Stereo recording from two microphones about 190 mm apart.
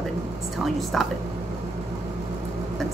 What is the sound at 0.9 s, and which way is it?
Speech, centre (ahead or behind).